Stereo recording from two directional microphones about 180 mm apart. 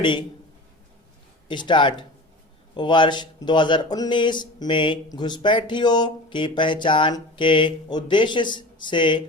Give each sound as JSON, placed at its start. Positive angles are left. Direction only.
{"t": 0.0, "sound": "speech", "side_deg": 25}
{"t": 1.5, "sound": "speech", "side_deg": 25}